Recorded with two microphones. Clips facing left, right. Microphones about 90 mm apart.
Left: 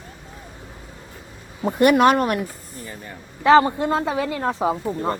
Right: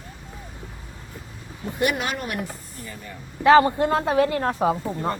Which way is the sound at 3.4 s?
25° left (ahead or behind).